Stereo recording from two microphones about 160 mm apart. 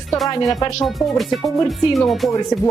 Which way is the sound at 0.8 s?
Centre (ahead or behind).